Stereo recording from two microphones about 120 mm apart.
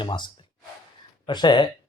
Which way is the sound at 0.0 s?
40° left (ahead or behind).